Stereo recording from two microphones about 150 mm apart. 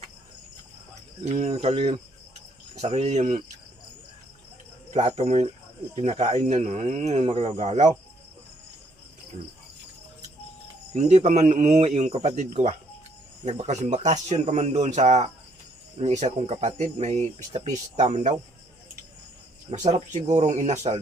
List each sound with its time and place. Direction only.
1.2 s speech: 45° right (ahead or behind)
4.9 s speech: 45° right (ahead or behind)
10.9 s speech: 50° right (ahead or behind)
20.1 s speech: 50° right (ahead or behind)